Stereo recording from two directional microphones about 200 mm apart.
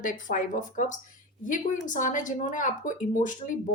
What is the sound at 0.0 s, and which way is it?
Speech, 40° left (ahead or behind).